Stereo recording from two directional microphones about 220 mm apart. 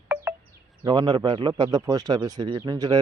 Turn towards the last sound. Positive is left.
turn(degrees=-15)  # may be behind; listen again after turning